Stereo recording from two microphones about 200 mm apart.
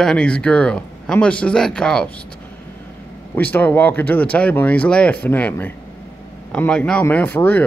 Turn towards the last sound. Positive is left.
turn(degrees=10)  # may be behind; listen again after turning